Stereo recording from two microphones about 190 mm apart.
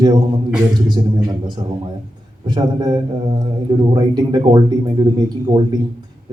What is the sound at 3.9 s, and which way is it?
Speech, 20° right (ahead or behind).